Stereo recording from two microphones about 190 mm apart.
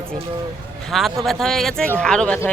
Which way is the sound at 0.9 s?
Centre (ahead or behind).